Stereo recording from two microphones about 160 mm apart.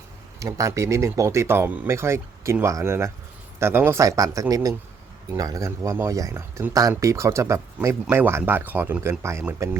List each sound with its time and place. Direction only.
0.3 s speech: 20° right (ahead or behind)